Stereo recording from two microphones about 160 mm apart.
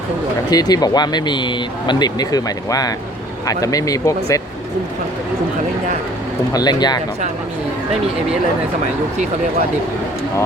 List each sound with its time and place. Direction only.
0.5 s speech: 25° left (ahead or behind)
6.5 s speech: 25° left (ahead or behind)